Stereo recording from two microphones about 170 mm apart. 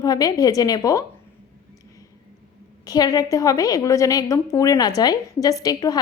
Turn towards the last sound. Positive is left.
turn(degrees=20)  # may be behind; listen again after turning